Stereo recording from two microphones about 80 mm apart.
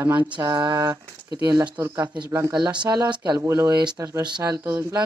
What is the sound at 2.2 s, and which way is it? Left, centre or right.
Speech, right.